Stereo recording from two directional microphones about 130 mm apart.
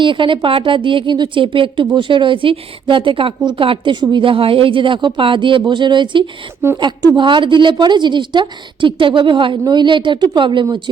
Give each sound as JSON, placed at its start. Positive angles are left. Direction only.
{"t": 0.0, "sound": "a woman's voice", "side_deg": -40}